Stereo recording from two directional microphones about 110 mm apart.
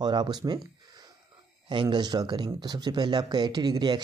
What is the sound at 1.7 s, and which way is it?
Speech, 45° right (ahead or behind).